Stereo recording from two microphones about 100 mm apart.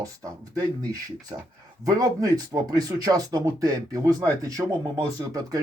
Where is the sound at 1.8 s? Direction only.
40° right (ahead or behind).